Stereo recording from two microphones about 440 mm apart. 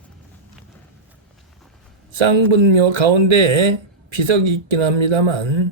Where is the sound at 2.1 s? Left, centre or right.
Right.